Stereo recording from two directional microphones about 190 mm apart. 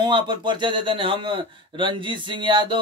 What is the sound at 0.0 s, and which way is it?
A man's voice, 25° right (ahead or behind).